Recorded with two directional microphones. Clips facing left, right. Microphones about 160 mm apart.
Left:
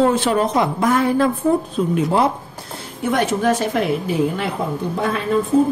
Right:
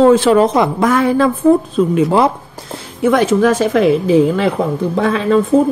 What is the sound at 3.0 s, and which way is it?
A woman's voice, 90° right.